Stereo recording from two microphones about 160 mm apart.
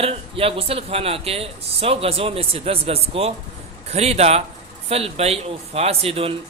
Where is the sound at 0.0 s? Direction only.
35° right (ahead or behind).